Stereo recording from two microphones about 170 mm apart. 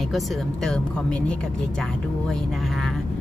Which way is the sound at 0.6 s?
5° left (ahead or behind).